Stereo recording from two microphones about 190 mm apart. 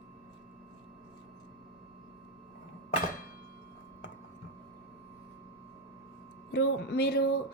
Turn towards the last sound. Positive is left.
turn(degrees=55)  # may be behind; listen again after turning